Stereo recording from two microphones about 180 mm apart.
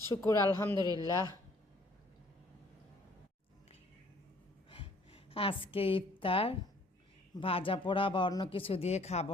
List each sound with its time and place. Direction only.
0.2 s a woman's voice: 15° left (ahead or behind)
4.7 s a sound: 30° left (ahead or behind)
7.3 s speech: 30° left (ahead or behind)